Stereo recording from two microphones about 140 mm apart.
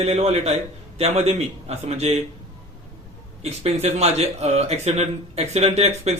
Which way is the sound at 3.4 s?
50° right (ahead or behind).